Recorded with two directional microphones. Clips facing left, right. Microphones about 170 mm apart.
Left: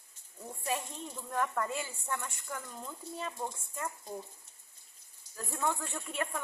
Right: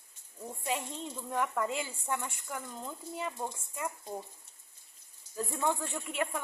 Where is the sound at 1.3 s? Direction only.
10° right (ahead or behind).